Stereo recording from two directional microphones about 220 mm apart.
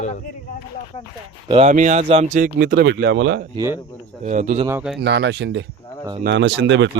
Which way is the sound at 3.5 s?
15° right (ahead or behind).